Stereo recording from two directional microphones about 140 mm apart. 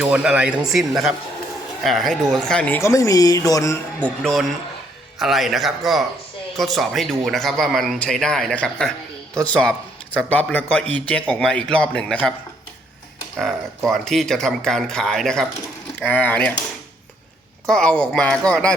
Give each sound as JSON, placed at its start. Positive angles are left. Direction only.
{"t": 0.0, "sound": "speech", "side_deg": -5}
{"t": 2.8, "sound": "speech", "side_deg": 25}
{"t": 4.0, "sound": "a man's voice", "side_deg": 5}
{"t": 13.4, "sound": "a man's voice", "side_deg": 0}
{"t": 17.7, "sound": "a man's voice", "side_deg": 5}